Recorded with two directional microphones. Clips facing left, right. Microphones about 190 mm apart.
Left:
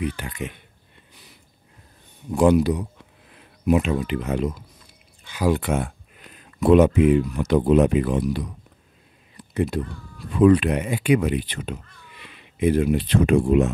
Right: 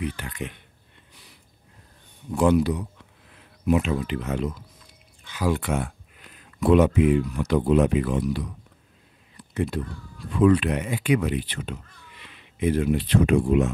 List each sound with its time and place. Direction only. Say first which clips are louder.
0.0 s speech: left 3 dB; 10° left (ahead or behind)
2.3 s speech: left 3 dB; 15° left (ahead or behind)
9.4 s a sound: left 3 dB; 15° left (ahead or behind)
10.4 s speech: left 3 dB; 15° left (ahead or behind)
13.2 s speech: left 3 dB; 35° left (ahead or behind)